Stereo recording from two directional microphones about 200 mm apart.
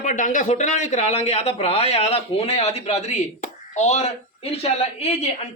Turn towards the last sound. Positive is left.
turn(degrees=30)  # may be behind; listen again after turning